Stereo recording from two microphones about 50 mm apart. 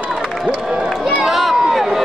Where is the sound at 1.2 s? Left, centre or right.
Centre.